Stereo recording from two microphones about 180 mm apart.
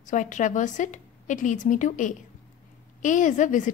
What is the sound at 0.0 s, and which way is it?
A woman's voice, 45° left (ahead or behind).